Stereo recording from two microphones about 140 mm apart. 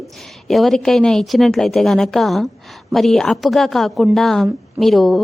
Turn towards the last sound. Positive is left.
turn(degrees=0)  # may be behind; listen again after turning